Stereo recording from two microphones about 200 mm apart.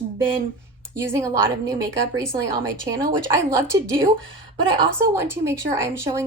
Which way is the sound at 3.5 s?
15° right (ahead or behind).